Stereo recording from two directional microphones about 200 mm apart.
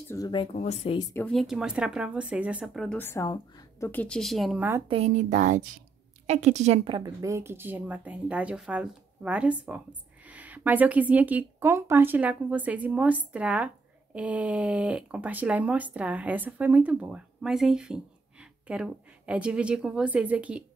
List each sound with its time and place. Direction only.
0.1 s speech: 20° left (ahead or behind)
0.6 s speech: 30° left (ahead or behind)
1.1 s speech: 5° left (ahead or behind)
3.0 s a woman's voice: 15° left (ahead or behind)
3.9 s speech: 5° left (ahead or behind)
4.8 s speech: 30° right (ahead or behind); by 20.6 s 5° right (ahead or behind)